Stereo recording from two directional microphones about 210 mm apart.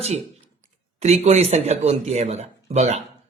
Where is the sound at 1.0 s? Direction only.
30° right (ahead or behind).